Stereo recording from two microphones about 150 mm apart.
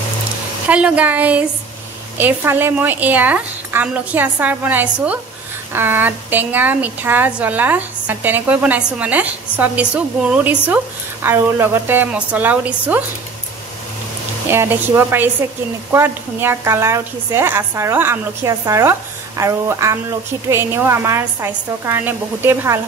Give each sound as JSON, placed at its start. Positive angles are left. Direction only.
{"t": 0.7, "sound": "a woman's voice", "side_deg": -10}
{"t": 14.5, "sound": "a woman's voice", "side_deg": -15}